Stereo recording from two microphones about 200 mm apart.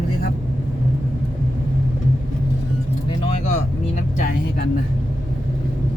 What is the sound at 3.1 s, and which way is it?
Vehicle, 30° left (ahead or behind).